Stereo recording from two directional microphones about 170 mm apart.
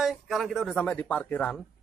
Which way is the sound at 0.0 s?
Centre (ahead or behind).